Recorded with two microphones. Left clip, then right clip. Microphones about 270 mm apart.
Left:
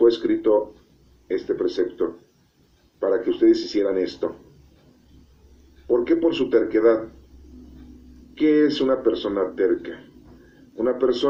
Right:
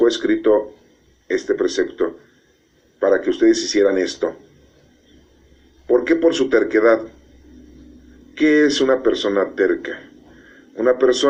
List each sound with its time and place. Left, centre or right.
0.0 s speech: right
5.9 s speech: right
8.4 s speech: right